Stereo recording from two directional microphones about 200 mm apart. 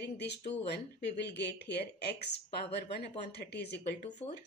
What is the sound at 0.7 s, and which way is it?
Speech, 55° left (ahead or behind).